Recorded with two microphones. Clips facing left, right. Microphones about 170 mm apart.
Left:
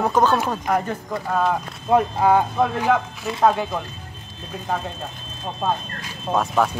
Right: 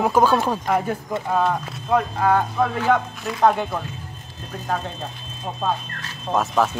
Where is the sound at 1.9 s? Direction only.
20° left (ahead or behind).